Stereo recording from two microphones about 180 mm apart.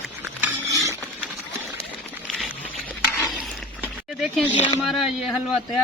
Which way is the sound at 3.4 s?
5° right (ahead or behind).